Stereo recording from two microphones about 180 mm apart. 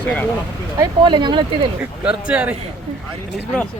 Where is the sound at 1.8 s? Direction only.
10° right (ahead or behind).